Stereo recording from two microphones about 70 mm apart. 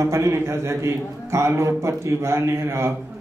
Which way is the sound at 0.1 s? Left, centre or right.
Right.